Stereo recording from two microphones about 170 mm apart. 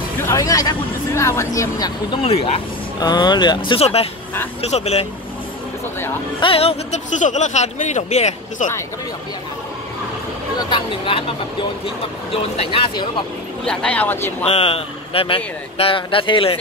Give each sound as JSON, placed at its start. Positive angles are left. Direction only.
{"t": 0.2, "sound": "speech", "side_deg": 20}
{"t": 2.2, "sound": "speech", "side_deg": 35}
{"t": 6.4, "sound": "speech", "side_deg": 35}
{"t": 10.6, "sound": "speech", "side_deg": 30}
{"t": 13.7, "sound": "speech", "side_deg": 10}
{"t": 14.4, "sound": "speech", "side_deg": 35}